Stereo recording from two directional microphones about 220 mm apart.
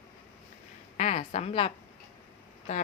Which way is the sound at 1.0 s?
30° left (ahead or behind).